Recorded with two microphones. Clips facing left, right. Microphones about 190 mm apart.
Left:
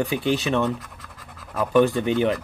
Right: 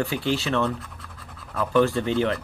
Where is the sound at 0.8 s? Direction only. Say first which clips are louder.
Even; 5° left (ahead or behind).